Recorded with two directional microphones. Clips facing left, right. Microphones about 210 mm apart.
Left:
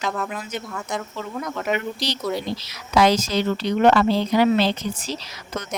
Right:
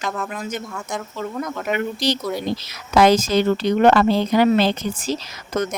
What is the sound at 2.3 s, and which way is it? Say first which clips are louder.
Speech: right 2 dB; 50° right (ahead or behind).